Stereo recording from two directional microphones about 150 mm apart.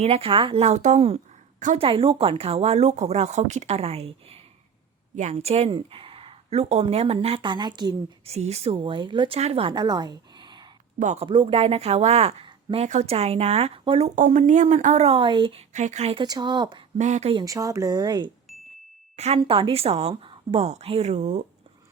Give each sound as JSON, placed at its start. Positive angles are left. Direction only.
{"t": 0.0, "sound": "a woman's voice", "side_deg": -40}
{"t": 1.5, "sound": "a woman's voice", "side_deg": -55}
{"t": 1.8, "sound": "speech", "side_deg": -40}
{"t": 8.3, "sound": "a woman's voice", "side_deg": -45}
{"t": 11.0, "sound": "speech", "side_deg": -50}
{"t": 11.3, "sound": "speech", "side_deg": -35}
{"t": 14.2, "sound": "speech", "side_deg": -55}
{"t": 15.7, "sound": "speech", "side_deg": -50}
{"t": 16.2, "sound": "speech", "side_deg": -30}
{"t": 17.0, "sound": "speech", "side_deg": -50}
{"t": 17.3, "sound": "speech", "side_deg": -25}
{"t": 19.1, "sound": "speech", "side_deg": -45}